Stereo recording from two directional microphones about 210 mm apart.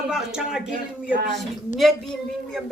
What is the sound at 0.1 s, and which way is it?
Speech, 5° right (ahead or behind).